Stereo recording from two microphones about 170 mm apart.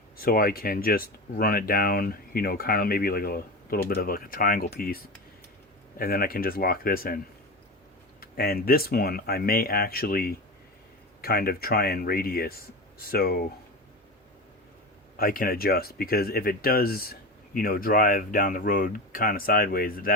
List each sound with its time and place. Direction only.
0.2 s speech: 60° left (ahead or behind)
8.2 s speech: 60° left (ahead or behind)
15.1 s speech: 60° left (ahead or behind)